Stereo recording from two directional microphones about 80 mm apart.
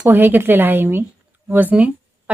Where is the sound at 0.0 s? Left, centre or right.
Right.